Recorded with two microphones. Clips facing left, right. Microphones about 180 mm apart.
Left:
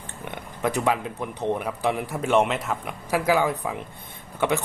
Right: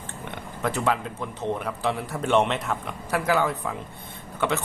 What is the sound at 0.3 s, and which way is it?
Speech, 15° left (ahead or behind).